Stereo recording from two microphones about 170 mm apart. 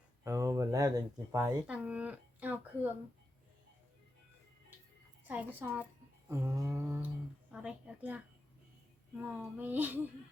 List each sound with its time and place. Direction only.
0.3 s speech: 15° right (ahead or behind)
1.6 s speech: 10° right (ahead or behind)
5.3 s a woman's voice: 10° right (ahead or behind)